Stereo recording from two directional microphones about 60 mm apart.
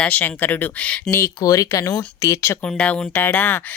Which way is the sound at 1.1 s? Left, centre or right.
Left.